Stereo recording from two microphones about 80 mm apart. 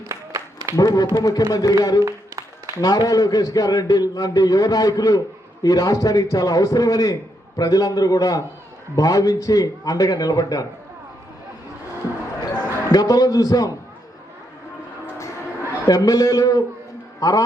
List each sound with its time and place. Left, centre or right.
0.1 s a sound: right
0.8 s a man's voice: left
12.5 s speech: left
15.9 s a man's voice: left